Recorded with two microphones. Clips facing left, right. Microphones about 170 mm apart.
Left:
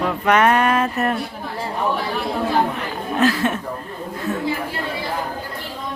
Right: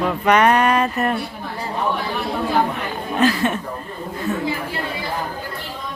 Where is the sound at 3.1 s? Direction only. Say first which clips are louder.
Even; centre (ahead or behind).